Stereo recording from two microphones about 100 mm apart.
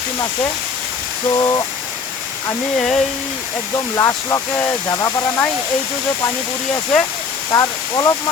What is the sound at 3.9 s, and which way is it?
Speech, 30° left (ahead or behind).